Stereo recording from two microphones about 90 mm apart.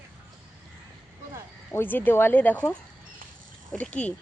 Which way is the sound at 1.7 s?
20° left (ahead or behind).